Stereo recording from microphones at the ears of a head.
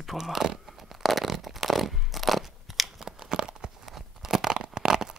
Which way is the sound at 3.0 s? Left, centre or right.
Right.